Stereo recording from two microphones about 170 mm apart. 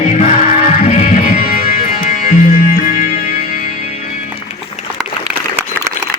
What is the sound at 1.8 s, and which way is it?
Music, 45° left (ahead or behind).